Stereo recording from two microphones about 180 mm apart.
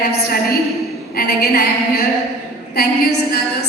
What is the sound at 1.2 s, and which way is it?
A woman's voice, 60° left (ahead or behind).